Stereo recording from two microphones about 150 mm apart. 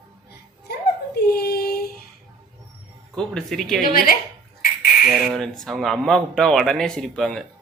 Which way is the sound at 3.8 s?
75° left (ahead or behind).